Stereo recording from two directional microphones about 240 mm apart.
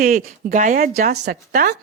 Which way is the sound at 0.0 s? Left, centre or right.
Right.